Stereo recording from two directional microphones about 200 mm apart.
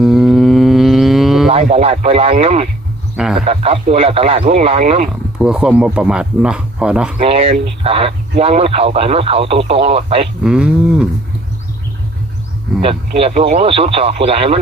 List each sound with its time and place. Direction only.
0.0 s cattle: centre (ahead or behind)
1.7 s a man's voice: 30° right (ahead or behind)
3.2 s a man's voice: centre (ahead or behind)
3.4 s a man's voice: 30° right (ahead or behind)
5.4 s a man's voice: 5° right (ahead or behind)
7.2 s a man's voice: 30° right (ahead or behind)
10.4 s a man's voice: 5° right (ahead or behind)
12.8 s a man's voice: 30° right (ahead or behind)